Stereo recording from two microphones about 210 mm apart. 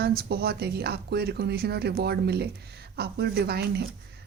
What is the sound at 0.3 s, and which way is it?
Speech, 50° right (ahead or behind).